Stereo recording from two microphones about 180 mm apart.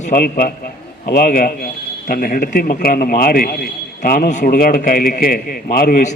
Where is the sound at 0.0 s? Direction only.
50° left (ahead or behind).